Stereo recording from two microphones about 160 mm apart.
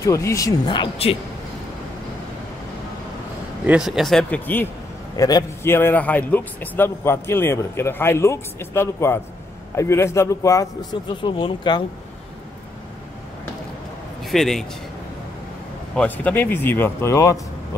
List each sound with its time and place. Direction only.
0.0 s speech: 20° left (ahead or behind)
3.6 s speech: 5° right (ahead or behind)
5.1 s a man's voice: 20° left (ahead or behind)
14.2 s a man's voice: centre (ahead or behind)
16.0 s a man's voice: 10° left (ahead or behind)